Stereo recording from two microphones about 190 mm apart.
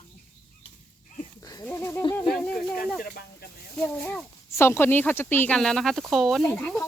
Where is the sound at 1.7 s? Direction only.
10° left (ahead or behind).